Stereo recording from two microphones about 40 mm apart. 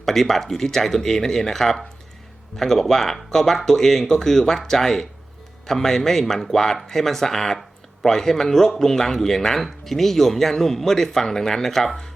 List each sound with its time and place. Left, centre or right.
0.0 s speech: centre